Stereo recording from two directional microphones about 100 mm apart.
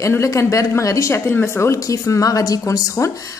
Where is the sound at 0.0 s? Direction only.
30° left (ahead or behind).